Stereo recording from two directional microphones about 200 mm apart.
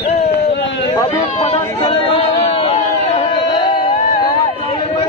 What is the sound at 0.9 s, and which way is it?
Chatter, 25° left (ahead or behind).